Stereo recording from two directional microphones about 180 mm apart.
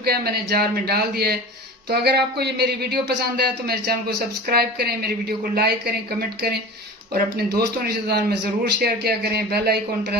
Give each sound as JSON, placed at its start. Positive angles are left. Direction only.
{"t": 0.0, "sound": "speech", "side_deg": -60}
{"t": 8.6, "sound": "speech", "side_deg": -60}